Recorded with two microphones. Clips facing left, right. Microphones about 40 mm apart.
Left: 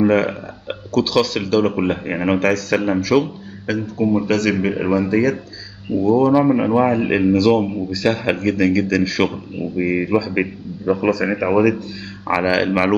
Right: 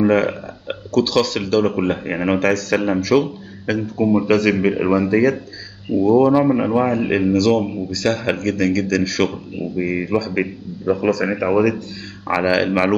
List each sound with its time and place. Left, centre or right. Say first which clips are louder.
0.0 s speech: even; centre